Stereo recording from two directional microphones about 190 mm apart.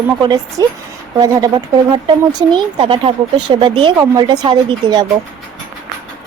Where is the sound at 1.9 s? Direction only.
25° right (ahead or behind).